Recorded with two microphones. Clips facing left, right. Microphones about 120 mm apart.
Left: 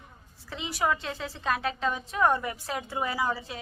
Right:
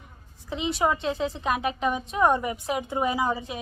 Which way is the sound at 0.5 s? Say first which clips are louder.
Right 4 dB; 20° right (ahead or behind).